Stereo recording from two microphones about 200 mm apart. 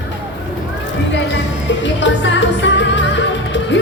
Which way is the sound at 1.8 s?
65° left (ahead or behind).